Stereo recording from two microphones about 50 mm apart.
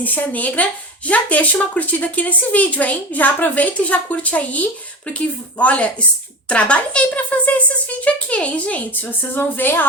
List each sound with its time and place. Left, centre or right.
0.0 s a child's voice: left